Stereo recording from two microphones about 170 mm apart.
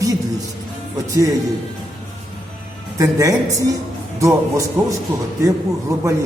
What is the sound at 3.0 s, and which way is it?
A man's voice, 20° right (ahead or behind).